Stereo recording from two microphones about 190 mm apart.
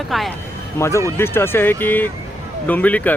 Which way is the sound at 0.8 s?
15° left (ahead or behind).